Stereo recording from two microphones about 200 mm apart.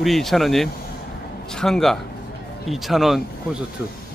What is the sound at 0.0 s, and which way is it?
Speech, centre (ahead or behind).